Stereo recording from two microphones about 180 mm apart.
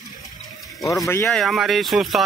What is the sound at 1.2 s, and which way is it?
Speech, centre (ahead or behind).